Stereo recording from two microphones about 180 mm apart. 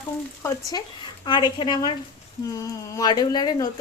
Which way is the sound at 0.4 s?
25° left (ahead or behind).